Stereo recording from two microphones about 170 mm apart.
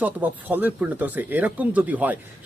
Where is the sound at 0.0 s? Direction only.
10° right (ahead or behind).